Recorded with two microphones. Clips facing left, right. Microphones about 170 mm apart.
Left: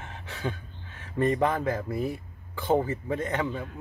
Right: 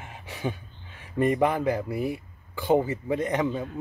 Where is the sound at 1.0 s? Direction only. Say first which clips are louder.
Right 2 dB; 10° right (ahead or behind).